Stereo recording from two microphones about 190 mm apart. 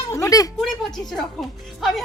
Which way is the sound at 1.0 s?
Centre (ahead or behind).